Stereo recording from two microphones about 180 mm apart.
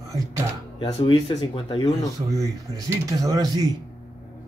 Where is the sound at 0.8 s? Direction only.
30° left (ahead or behind).